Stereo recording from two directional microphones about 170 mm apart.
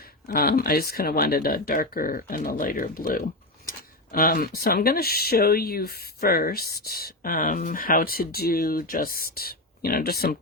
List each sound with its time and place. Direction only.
0.3 s speech: 60° left (ahead or behind)